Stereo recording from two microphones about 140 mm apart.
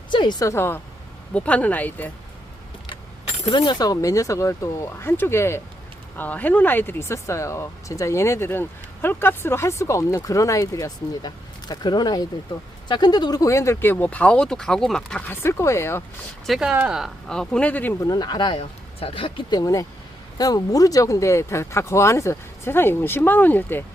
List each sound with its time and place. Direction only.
0.1 s a woman's voice: 30° left (ahead or behind); by 2.1 s 10° left (ahead or behind)
3.4 s speech: 35° left (ahead or behind); by 15.2 s 5° left (ahead or behind)
15.3 s speech: 20° left (ahead or behind)
16.5 s speech: 5° right (ahead or behind); by 17.9 s 10° left (ahead or behind)
18.0 s speech: 30° left (ahead or behind); by 23.8 s 15° left (ahead or behind)